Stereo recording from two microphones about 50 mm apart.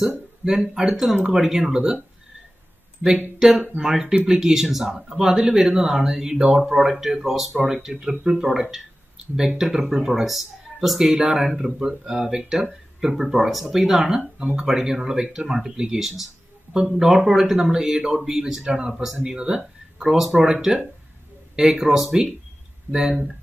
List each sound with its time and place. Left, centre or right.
0.0 s a sound: centre
0.7 s speech: centre
3.7 s speech: centre
19.3 s speech: centre
20.0 s speech: centre